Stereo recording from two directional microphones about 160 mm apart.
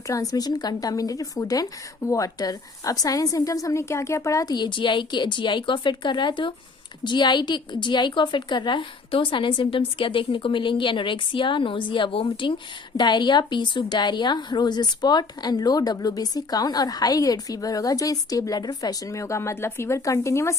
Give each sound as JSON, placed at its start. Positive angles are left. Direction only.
{"t": 0.1, "sound": "a woman's voice", "side_deg": 20}